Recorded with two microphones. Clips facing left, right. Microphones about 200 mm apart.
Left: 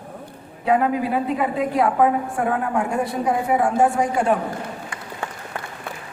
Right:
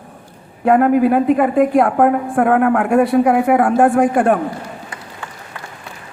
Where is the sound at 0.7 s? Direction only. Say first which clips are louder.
Right 8 dB; 55° right (ahead or behind).